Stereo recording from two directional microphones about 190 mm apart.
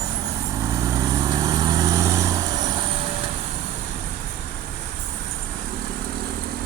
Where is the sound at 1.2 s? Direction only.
20° right (ahead or behind).